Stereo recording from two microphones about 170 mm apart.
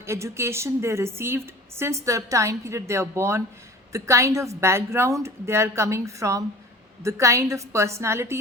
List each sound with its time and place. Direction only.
0.0 s a woman's voice: 15° right (ahead or behind)